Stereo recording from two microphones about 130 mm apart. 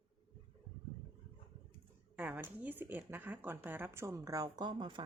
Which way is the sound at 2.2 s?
15° right (ahead or behind).